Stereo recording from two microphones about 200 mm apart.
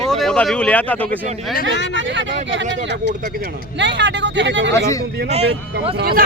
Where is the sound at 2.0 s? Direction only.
65° right (ahead or behind).